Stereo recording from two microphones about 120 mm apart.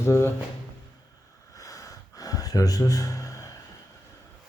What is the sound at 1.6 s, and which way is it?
Gasp, 30° left (ahead or behind).